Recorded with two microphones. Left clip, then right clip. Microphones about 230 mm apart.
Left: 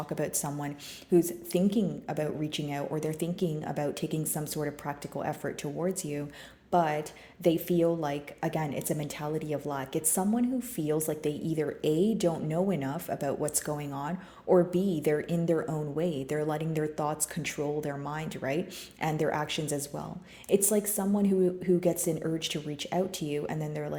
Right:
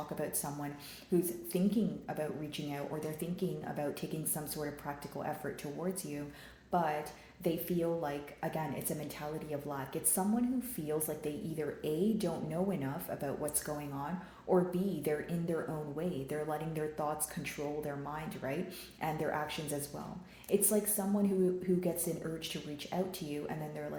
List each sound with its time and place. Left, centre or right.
1.1 s a woman's voice: left